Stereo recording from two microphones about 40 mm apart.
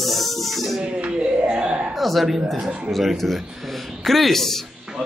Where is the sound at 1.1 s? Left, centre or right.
Right.